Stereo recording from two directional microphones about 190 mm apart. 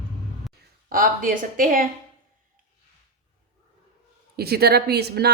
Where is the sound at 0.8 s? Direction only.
50° right (ahead or behind).